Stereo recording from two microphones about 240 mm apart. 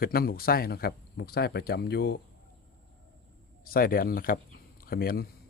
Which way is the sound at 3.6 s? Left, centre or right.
Left.